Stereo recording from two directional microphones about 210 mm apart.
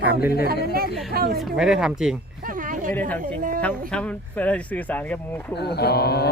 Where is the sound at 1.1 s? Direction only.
45° right (ahead or behind).